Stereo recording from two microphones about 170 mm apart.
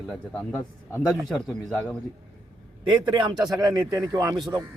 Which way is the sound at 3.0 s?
30° right (ahead or behind).